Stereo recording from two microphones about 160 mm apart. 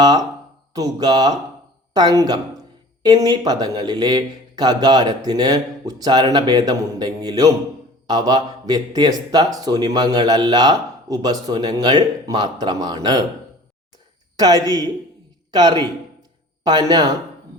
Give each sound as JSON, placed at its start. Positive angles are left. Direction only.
{"t": 0.0, "sound": "speech", "side_deg": -25}
{"t": 14.3, "sound": "speech", "side_deg": -25}